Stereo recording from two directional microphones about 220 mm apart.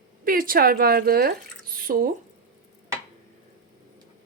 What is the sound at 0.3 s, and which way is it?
Speech, 40° right (ahead or behind).